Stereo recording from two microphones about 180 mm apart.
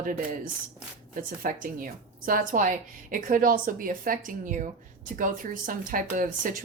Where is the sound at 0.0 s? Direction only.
50° right (ahead or behind).